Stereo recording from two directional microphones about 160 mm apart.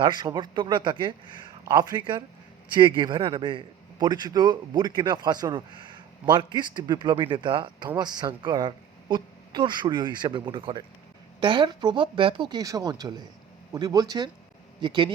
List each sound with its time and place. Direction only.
0.0 s speech: 25° right (ahead or behind)